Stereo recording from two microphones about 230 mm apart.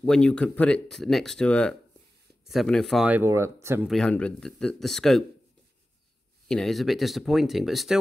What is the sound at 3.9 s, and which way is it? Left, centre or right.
Speech, centre.